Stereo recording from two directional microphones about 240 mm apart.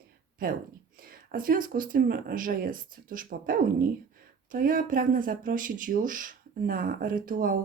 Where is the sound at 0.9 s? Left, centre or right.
Right.